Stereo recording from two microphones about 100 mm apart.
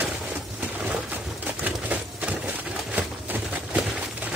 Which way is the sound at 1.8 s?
15° right (ahead or behind).